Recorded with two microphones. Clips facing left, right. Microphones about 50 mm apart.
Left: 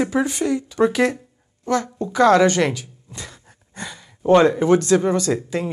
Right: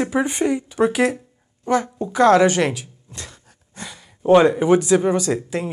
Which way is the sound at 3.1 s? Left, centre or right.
Centre.